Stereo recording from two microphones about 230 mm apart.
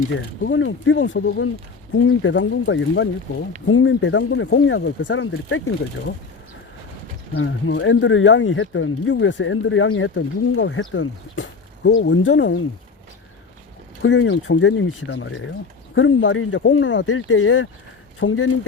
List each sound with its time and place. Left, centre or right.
0.1 s speech: left
7.3 s speech: left
14.0 s speech: left